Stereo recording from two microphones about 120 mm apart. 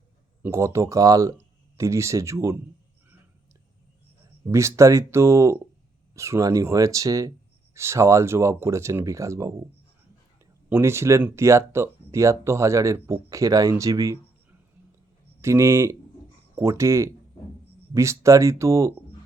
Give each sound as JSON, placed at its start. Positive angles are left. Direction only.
{"t": 0.4, "sound": "speech", "side_deg": -25}
{"t": 4.5, "sound": "speech", "side_deg": -25}
{"t": 10.7, "sound": "speech", "side_deg": -20}
{"t": 15.4, "sound": "speech", "side_deg": -25}